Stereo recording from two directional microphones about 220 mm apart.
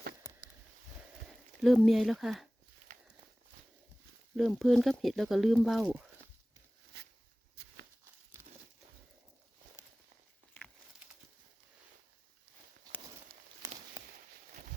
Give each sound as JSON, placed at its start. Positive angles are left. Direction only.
{"t": 0.2, "sound": "a sound", "side_deg": 15}
{"t": 1.6, "sound": "speech", "side_deg": 0}
{"t": 4.4, "sound": "speech", "side_deg": 0}